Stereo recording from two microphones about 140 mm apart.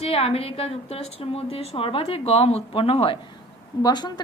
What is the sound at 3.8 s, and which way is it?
Speech, 30° left (ahead or behind).